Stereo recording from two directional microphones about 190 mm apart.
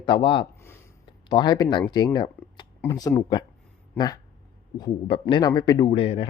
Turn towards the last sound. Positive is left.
turn(degrees=30)  # may be behind; listen again after turning